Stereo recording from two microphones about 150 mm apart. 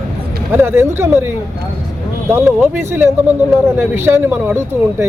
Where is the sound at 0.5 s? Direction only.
15° right (ahead or behind).